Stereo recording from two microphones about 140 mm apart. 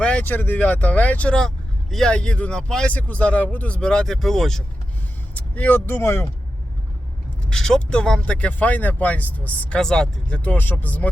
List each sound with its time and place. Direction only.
0.0 s speech: 10° left (ahead or behind)
7.4 s speech: 5° left (ahead or behind)